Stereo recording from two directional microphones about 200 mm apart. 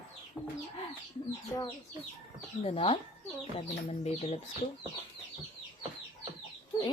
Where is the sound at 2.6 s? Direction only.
30° left (ahead or behind).